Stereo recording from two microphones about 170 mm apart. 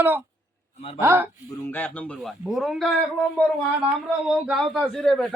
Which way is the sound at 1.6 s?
10° left (ahead or behind).